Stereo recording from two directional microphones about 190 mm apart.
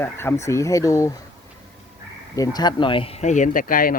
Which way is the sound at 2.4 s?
20° left (ahead or behind).